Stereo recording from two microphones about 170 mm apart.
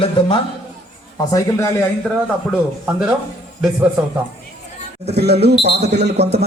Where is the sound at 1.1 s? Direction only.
20° left (ahead or behind).